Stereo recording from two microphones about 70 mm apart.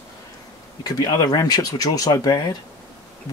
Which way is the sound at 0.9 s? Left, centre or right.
Left.